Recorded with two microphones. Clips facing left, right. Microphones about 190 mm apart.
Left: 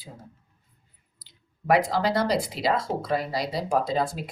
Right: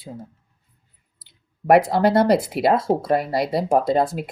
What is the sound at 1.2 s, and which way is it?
Clicking, 60° right (ahead or behind).